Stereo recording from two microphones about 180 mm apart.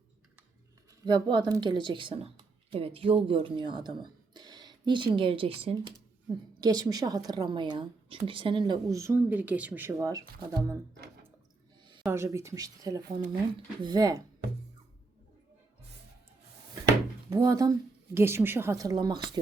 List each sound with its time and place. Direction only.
1.0 s speech: 25° right (ahead or behind)
12.0 s speech: 15° right (ahead or behind)
17.2 s speech: 20° right (ahead or behind)